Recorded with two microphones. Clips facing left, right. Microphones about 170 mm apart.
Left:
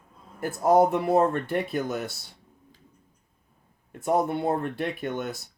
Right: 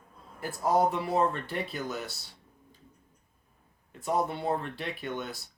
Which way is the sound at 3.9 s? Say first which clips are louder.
Left 5 dB; 50° left (ahead or behind).